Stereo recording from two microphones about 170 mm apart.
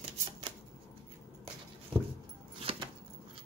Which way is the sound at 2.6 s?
35° right (ahead or behind).